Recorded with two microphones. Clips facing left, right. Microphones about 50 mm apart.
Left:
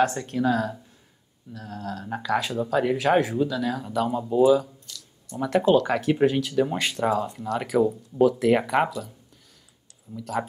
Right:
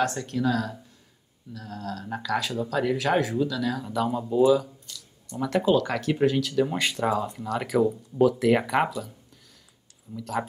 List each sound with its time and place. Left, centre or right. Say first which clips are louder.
0.0 s speech: left 3 dB; centre
4.6 s a sound: even; centre
5.4 s speech: left 3 dB; centre
10.1 s speech: left 1 dB; centre